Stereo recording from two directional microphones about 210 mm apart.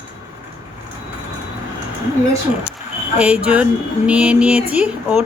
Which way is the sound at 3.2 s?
5° right (ahead or behind).